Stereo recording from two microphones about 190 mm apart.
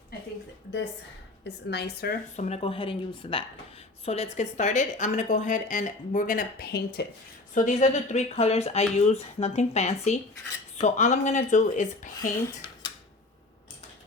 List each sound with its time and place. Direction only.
1.5 s a woman's voice: 60° left (ahead or behind)
2.3 s speech: 35° left (ahead or behind); by 7.0 s 55° left (ahead or behind)
7.5 s speech: 40° left (ahead or behind)